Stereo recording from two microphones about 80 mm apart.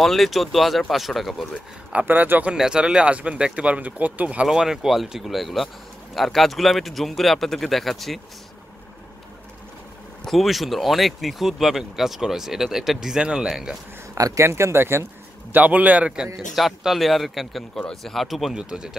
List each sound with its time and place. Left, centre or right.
0.0 s speech: centre
1.9 s speech: centre
2.5 s speech: centre
4.5 s speech: centre
10.2 s speech: centre
14.1 s speech: right
15.5 s speech: centre
16.3 s speech: centre